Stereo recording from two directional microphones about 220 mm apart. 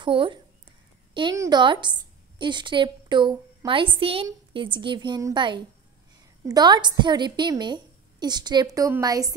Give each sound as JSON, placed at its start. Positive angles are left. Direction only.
{"t": 0.0, "sound": "a woman's voice", "side_deg": -20}